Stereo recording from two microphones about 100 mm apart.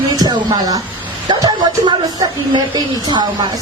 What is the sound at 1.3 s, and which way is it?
Speech, 45° right (ahead or behind).